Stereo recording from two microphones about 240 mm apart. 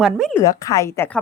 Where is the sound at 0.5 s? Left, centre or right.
Centre.